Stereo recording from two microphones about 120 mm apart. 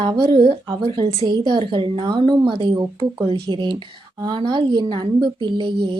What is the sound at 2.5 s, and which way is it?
Speech, 50° right (ahead or behind).